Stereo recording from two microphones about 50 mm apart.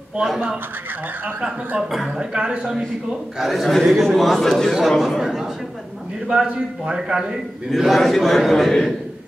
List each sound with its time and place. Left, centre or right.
2.0 s speech: centre
3.1 s a man's voice: centre
4.7 s a man's voice: centre
7.0 s a man's voice: centre
7.7 s a man's voice: centre